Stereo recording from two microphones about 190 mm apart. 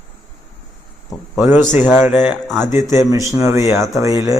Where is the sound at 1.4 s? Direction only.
10° right (ahead or behind).